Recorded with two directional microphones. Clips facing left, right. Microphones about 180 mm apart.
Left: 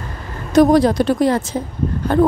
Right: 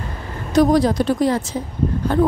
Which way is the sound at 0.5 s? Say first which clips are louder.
Left 3 dB; 55° left (ahead or behind).